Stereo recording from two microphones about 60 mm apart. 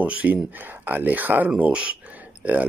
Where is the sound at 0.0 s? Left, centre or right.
Right.